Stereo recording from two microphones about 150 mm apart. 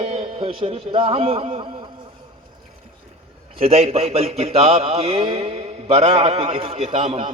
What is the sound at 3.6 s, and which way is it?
A man's voice, 40° right (ahead or behind).